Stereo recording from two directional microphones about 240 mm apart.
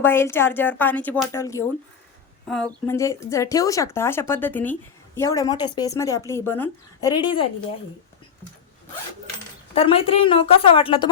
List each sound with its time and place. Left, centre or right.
0.0 s speech: centre
9.7 s a woman's voice: left